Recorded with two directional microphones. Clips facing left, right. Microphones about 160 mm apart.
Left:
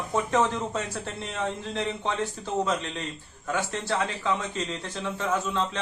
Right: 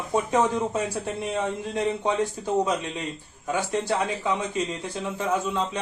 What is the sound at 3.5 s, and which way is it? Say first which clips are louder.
Speech: right 3 dB; 15° right (ahead or behind).